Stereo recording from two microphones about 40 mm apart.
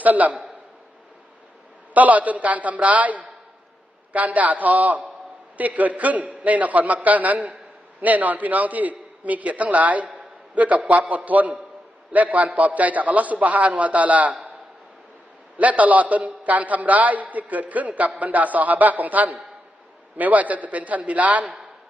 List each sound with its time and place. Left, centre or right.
0.0 s a man's voice: right
1.9 s a man's voice: right
15.5 s a man's voice: right